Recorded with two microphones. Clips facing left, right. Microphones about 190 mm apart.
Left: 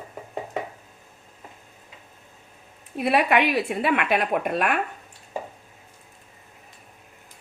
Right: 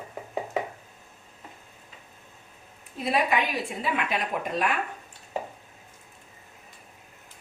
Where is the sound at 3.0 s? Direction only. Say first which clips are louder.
Left 5 dB; 65° left (ahead or behind).